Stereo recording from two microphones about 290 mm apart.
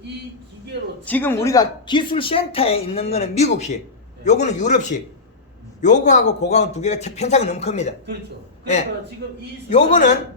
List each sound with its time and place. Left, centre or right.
1.0 s speech: centre; by 7.9 s left
9.6 s speech: left